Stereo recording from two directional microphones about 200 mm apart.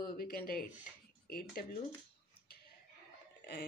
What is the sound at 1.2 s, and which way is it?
Speech, 50° left (ahead or behind).